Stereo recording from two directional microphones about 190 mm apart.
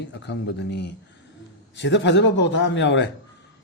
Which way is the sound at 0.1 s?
65° left (ahead or behind).